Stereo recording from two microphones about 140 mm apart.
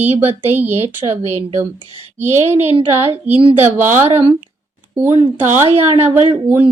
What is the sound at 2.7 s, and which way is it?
Speech, 40° right (ahead or behind).